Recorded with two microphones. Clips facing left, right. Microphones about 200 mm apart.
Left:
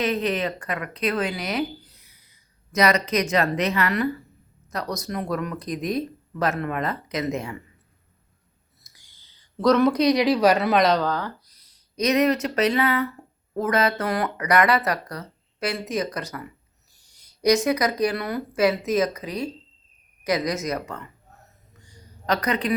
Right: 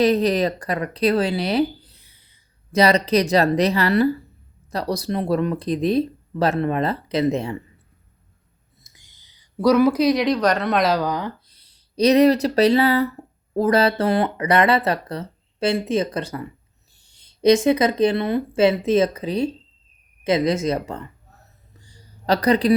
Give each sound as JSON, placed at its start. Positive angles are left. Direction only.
{"t": 0.0, "sound": "speech", "side_deg": -35}
{"t": 8.8, "sound": "speech", "side_deg": -20}
{"t": 11.4, "sound": "speech", "side_deg": -30}
{"t": 21.7, "sound": "a sound", "side_deg": -30}